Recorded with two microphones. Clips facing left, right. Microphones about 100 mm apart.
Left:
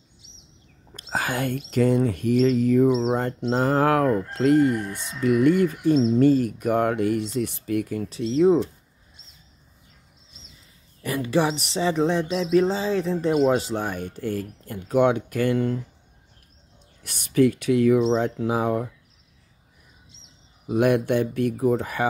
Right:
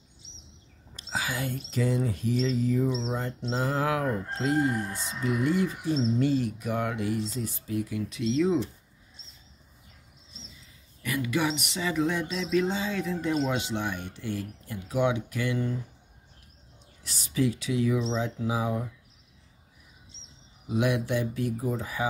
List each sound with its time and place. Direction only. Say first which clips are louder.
0.9 s whispering: left 6 dB; 55° left (ahead or behind)
1.7 s speech: left 8 dB; 60° left (ahead or behind)
8.1 s speech: left 7 dB; 35° left (ahead or behind)
11.0 s speech: left 6 dB; 35° left (ahead or behind); by 15.8 s 60° left (ahead or behind)
17.0 s speech: left 8 dB; 60° left (ahead or behind)
20.6 s speech: left 7 dB; 55° left (ahead or behind)